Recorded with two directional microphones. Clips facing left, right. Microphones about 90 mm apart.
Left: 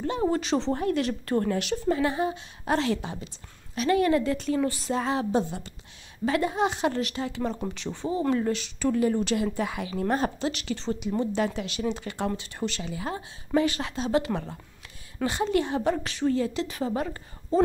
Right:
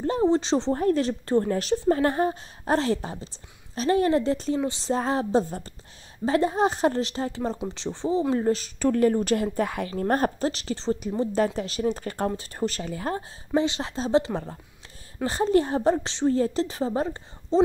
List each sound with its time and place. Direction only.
0.2 s a woman's voice: 25° right (ahead or behind); by 10.5 s 45° right (ahead or behind)
10.5 s a woman's voice: 35° right (ahead or behind)
13.6 s a woman's voice: 25° right (ahead or behind)